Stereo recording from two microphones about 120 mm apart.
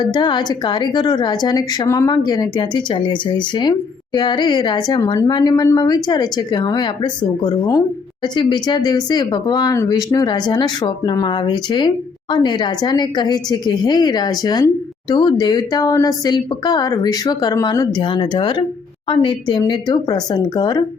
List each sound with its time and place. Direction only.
0.0 s a woman's voice: 40° left (ahead or behind)